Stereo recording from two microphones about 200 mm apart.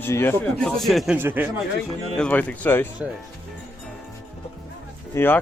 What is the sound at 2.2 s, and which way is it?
Speech, 10° left (ahead or behind).